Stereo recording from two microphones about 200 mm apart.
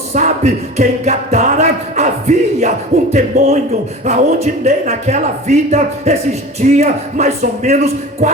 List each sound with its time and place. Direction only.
0.1 s music: 35° right (ahead or behind)